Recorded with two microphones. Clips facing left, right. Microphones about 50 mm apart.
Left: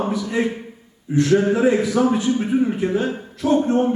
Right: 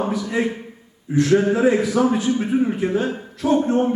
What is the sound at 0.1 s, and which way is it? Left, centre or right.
Speech, right.